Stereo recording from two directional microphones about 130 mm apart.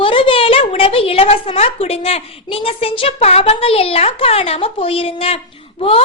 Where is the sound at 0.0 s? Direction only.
45° left (ahead or behind).